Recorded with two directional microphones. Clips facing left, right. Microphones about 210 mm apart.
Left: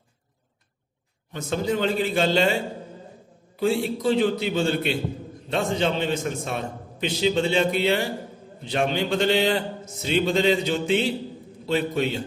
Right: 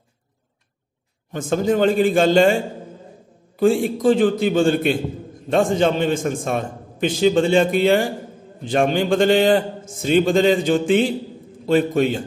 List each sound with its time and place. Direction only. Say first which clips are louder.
1.3 s a man's voice: right 6 dB; 50° right (ahead or behind)